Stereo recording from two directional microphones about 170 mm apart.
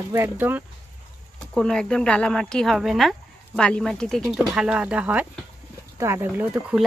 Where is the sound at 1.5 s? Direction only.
5° left (ahead or behind).